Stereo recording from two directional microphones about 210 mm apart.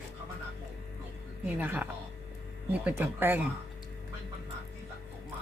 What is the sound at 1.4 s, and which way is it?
Speech, 10° right (ahead or behind).